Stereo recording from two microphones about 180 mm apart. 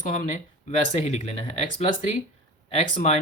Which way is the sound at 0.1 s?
45° left (ahead or behind).